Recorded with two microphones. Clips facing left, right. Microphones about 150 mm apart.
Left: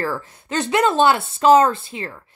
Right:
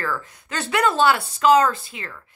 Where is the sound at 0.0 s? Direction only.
30° left (ahead or behind).